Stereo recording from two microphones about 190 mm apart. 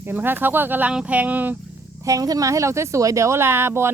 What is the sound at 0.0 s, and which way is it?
Speech, 10° right (ahead or behind).